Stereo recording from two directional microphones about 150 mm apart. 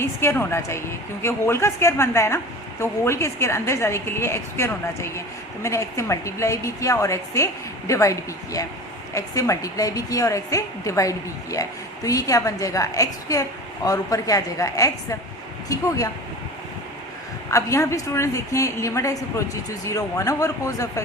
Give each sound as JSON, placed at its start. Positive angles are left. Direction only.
{"t": 0.0, "sound": "a woman's voice", "side_deg": 15}
{"t": 17.5, "sound": "a woman's voice", "side_deg": 20}